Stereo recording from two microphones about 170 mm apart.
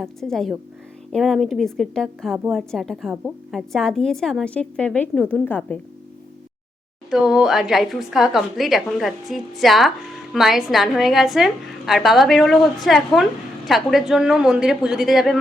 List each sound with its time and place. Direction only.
0.0 s a woman's voice: centre (ahead or behind)
7.1 s a woman's voice: centre (ahead or behind)